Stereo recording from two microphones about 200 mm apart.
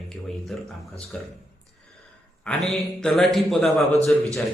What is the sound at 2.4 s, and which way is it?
A man's voice, centre (ahead or behind).